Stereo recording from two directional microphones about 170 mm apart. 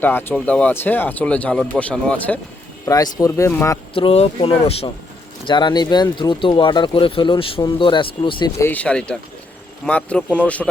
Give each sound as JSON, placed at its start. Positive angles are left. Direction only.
{"t": 0.0, "sound": "speech", "side_deg": 10}
{"t": 2.8, "sound": "speech", "side_deg": 20}
{"t": 3.9, "sound": "speech", "side_deg": 35}
{"t": 8.5, "sound": "speech", "side_deg": 10}